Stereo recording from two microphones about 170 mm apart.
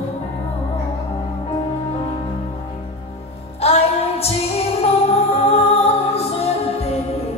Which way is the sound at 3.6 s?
35° left (ahead or behind).